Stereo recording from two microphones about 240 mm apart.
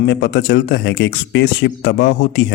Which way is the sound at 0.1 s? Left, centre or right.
Left.